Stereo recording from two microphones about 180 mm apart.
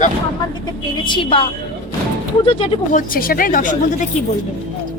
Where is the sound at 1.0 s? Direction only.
25° left (ahead or behind).